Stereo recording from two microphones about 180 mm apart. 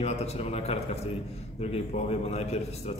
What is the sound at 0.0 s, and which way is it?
A man's voice, 35° left (ahead or behind).